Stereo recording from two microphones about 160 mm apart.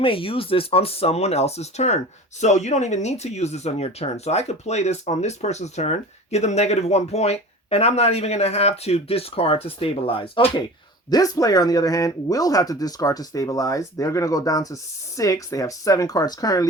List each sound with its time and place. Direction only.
0.0 s speech: 35° left (ahead or behind)